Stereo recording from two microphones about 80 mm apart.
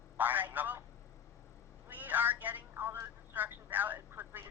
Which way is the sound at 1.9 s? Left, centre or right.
Right.